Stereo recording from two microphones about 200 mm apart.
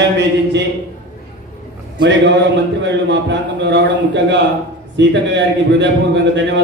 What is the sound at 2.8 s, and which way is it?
A man's voice, 65° right (ahead or behind).